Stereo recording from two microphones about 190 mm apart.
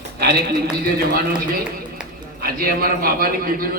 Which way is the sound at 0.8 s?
50° right (ahead or behind).